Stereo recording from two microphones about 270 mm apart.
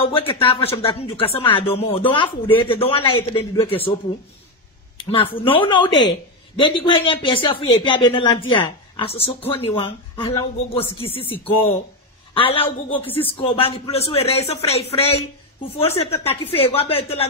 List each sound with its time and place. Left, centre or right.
0.0 s speech: left
4.9 s speech: centre